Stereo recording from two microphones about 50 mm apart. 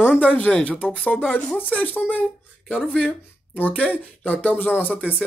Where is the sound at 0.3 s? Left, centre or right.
Left.